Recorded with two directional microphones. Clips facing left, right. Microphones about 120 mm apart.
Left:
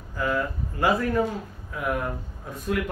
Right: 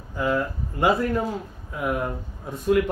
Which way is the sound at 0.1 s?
20° right (ahead or behind).